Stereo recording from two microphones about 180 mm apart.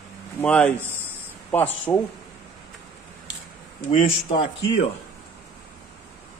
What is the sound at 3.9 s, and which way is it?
Speech, 35° left (ahead or behind).